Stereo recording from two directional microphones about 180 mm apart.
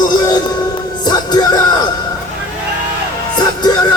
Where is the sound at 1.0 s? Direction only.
25° left (ahead or behind).